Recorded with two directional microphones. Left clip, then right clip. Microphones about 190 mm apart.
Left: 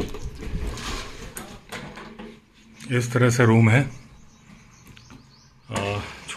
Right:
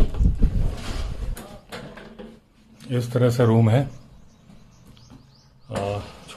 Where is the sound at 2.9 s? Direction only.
5° right (ahead or behind).